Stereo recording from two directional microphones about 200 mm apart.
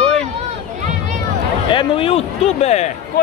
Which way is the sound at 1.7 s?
25° left (ahead or behind).